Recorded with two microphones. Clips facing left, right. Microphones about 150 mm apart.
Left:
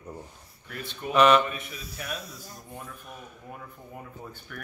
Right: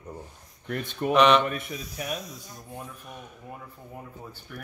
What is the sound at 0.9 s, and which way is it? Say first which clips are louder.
Speech: right 8 dB; 50° right (ahead or behind).